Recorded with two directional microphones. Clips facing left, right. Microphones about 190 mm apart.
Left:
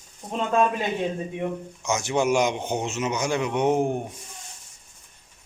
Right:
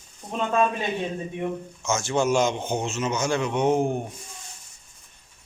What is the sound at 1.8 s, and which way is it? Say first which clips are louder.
A man's voice: even; 15° left (ahead or behind).